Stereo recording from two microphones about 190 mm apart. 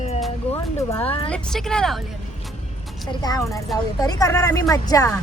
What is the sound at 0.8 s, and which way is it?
Speech, 15° left (ahead or behind).